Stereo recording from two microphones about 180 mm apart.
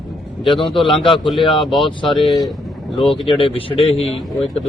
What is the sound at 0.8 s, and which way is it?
A man's voice, 30° left (ahead or behind).